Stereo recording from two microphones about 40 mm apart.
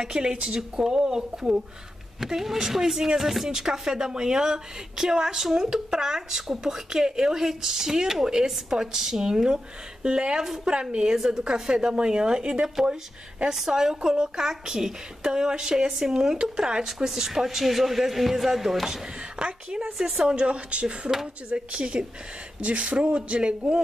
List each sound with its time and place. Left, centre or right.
0.0 s speech: centre
10.4 s speech: centre
10.7 s speech: right; by 18.9 s centre
19.3 s a woman's voice: right
20.0 s speech: centre
20.3 s speech: right